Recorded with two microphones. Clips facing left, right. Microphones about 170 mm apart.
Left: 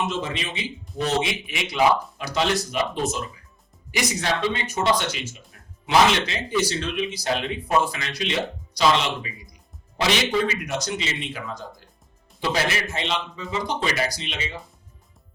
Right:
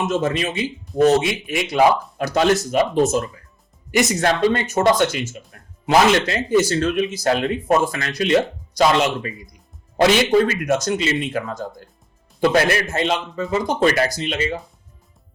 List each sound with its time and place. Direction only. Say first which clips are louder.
0.0 s speech: right 7 dB; 45° right (ahead or behind)